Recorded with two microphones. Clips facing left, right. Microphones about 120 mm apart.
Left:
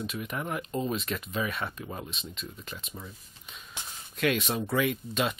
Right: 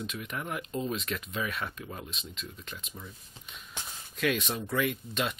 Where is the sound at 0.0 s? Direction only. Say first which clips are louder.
Left 3 dB; 5° left (ahead or behind).